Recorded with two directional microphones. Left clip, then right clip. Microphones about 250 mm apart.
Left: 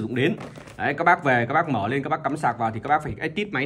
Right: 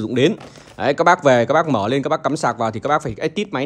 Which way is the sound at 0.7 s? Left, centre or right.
Right.